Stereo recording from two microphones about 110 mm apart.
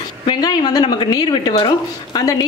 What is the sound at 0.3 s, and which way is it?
A woman's voice, 35° left (ahead or behind).